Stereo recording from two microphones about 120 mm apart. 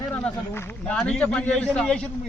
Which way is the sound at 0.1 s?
10° left (ahead or behind).